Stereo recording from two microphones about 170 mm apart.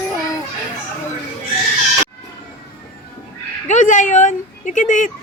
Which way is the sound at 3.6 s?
45° left (ahead or behind).